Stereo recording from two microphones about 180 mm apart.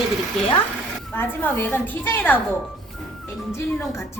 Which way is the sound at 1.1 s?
10° left (ahead or behind).